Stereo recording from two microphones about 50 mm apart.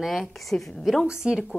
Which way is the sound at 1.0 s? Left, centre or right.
Centre.